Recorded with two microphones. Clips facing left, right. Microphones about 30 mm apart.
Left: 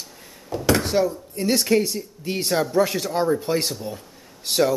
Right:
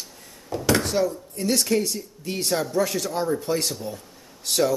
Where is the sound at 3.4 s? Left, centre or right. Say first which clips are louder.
Left 2 dB; centre.